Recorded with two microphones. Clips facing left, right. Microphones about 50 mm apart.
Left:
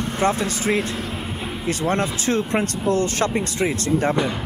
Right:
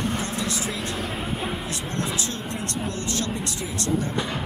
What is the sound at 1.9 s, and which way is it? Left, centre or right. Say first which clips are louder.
Speech: left 7 dB; left.